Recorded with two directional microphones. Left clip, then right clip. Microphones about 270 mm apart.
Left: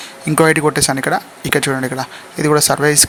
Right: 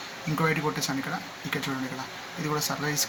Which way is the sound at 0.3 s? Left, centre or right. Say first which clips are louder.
Left 15 dB; left.